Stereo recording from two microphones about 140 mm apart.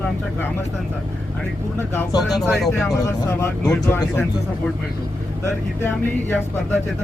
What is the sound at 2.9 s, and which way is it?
Speech, 20° left (ahead or behind).